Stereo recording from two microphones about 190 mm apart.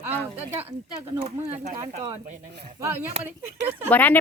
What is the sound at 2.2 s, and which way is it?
Speech, 45° right (ahead or behind).